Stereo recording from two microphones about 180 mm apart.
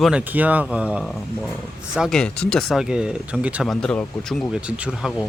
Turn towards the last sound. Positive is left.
turn(degrees=-5)  # may be behind; listen again after turning